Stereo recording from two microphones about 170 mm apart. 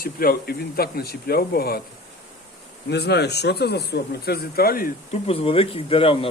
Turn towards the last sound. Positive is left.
turn(degrees=35)  # may be behind; listen again after turning